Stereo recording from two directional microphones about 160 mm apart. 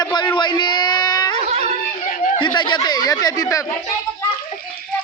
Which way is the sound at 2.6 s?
25° left (ahead or behind).